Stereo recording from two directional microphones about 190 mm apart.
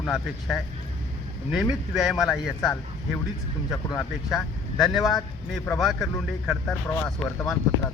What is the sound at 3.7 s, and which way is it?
Speech, 20° left (ahead or behind).